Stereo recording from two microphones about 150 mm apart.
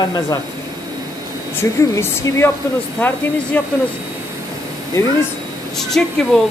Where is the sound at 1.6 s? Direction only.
15° left (ahead or behind).